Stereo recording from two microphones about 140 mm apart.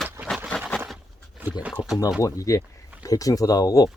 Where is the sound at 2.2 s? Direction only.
25° left (ahead or behind).